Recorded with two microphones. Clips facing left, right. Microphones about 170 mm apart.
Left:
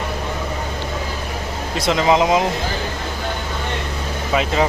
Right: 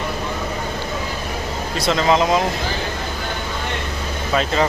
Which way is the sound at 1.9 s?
15° left (ahead or behind).